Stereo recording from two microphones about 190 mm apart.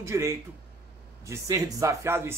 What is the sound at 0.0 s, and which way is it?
Speech, 15° right (ahead or behind).